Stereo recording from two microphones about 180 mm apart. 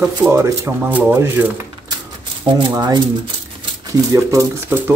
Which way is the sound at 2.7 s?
25° right (ahead or behind).